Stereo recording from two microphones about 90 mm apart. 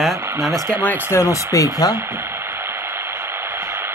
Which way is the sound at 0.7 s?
20° left (ahead or behind).